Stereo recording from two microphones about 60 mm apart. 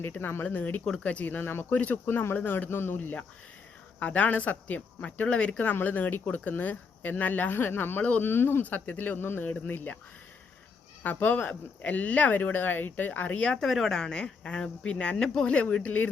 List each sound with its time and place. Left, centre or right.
0.2 s speech: left
0.4 s speech: left
1.7 s speech: left
2.0 s speech: left
4.0 s speech: left
11.0 s speech: left
13.6 s speech: centre; by 16.0 s left